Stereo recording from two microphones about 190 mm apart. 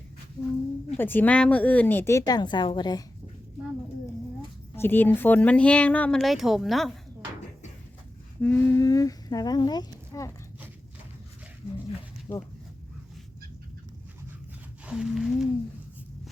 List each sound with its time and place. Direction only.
0.9 s speech: 10° left (ahead or behind)
4.7 s speech: 10° left (ahead or behind)
8.4 s speech: 10° left (ahead or behind)
12.3 s speech: 20° left (ahead or behind)
14.8 s a sound: 5° right (ahead or behind)